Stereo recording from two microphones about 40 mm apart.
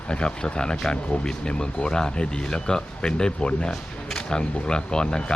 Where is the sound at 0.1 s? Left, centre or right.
Left.